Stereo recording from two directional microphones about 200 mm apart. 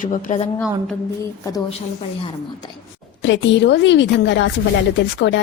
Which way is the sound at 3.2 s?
60° left (ahead or behind).